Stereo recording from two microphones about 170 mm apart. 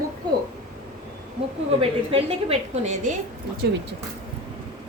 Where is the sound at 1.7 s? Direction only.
35° right (ahead or behind).